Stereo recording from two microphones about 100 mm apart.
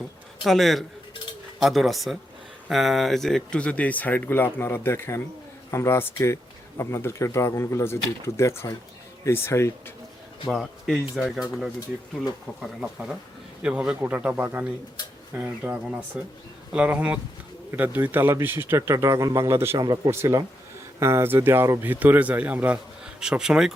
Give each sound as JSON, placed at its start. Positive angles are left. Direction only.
{"t": 0.4, "sound": "speech", "side_deg": 0}
{"t": 10.5, "sound": "a man's voice", "side_deg": 0}